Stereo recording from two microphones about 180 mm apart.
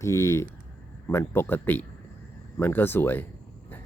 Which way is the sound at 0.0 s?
15° left (ahead or behind).